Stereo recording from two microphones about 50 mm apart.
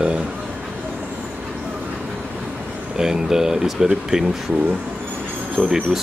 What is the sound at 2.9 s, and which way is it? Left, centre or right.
Speech, centre.